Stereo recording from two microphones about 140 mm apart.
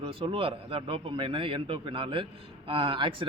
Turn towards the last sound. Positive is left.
turn(degrees=-35)  # may be behind; listen again after turning